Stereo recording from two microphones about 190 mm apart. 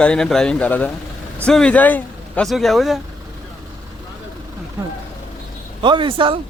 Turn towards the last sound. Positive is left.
turn(degrees=-25)  # may be behind; listen again after turning